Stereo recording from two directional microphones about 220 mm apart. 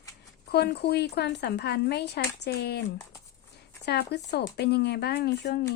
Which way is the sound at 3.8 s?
50° left (ahead or behind).